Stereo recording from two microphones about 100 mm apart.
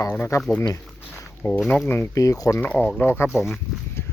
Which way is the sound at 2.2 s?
35° left (ahead or behind).